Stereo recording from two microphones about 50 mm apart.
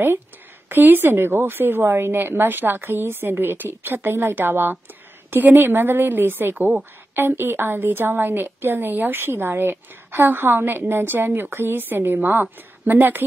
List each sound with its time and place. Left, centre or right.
0.7 s a woman's voice: right